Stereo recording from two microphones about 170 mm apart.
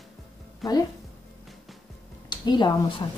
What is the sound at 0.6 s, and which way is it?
Speech, centre (ahead or behind).